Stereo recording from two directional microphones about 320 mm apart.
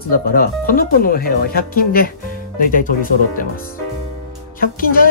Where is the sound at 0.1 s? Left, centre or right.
Left.